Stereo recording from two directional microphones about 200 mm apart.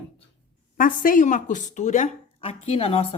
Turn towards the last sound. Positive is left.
turn(degrees=30)  # may be behind; listen again after turning